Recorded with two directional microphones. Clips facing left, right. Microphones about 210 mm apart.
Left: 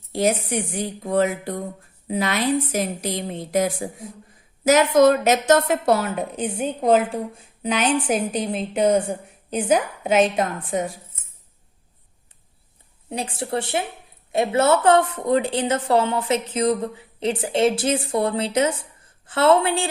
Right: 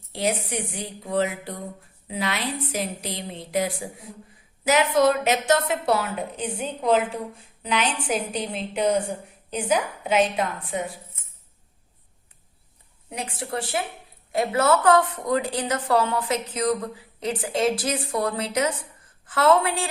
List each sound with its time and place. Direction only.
0.1 s a woman's voice: 45° left (ahead or behind)
13.1 s a woman's voice: 30° left (ahead or behind)